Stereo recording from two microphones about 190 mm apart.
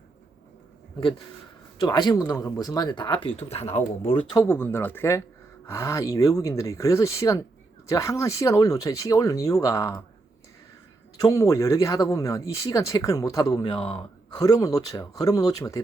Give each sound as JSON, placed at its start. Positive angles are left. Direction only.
{"t": 1.8, "sound": "speech", "side_deg": 20}
{"t": 4.4, "sound": "speech", "side_deg": 10}
{"t": 11.2, "sound": "speech", "side_deg": 15}